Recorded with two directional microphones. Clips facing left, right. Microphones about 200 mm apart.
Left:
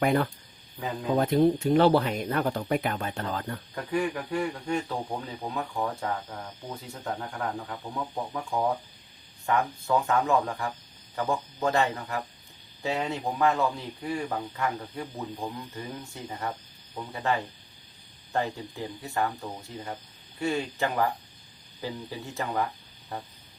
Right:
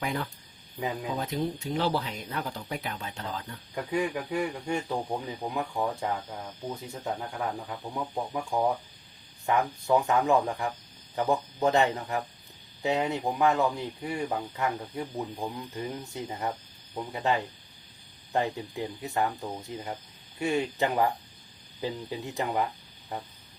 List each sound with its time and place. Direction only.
0.0 s speech: 60° left (ahead or behind)
3.9 s speech: 15° right (ahead or behind)